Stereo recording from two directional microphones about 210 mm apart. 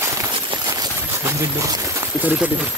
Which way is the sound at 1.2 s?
15° right (ahead or behind).